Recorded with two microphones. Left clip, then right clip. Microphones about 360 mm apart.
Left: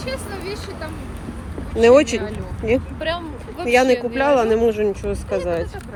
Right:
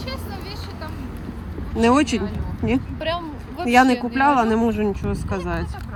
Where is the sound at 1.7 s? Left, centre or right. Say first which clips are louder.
Left 6 dB; centre.